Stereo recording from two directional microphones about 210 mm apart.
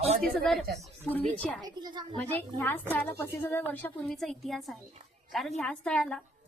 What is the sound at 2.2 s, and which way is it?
A woman's voice, 10° left (ahead or behind).